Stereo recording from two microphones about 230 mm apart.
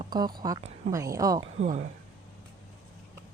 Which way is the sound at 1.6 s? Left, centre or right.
Right.